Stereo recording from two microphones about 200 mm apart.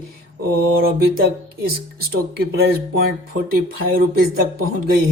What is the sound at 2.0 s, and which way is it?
Speech, 50° right (ahead or behind).